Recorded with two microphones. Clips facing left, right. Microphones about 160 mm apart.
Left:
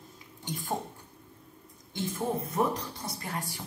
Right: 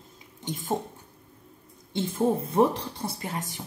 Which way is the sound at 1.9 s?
30° right (ahead or behind).